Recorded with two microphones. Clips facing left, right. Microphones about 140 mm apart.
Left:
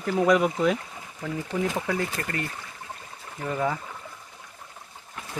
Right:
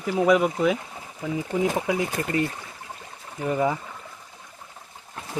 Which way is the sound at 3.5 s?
15° right (ahead or behind).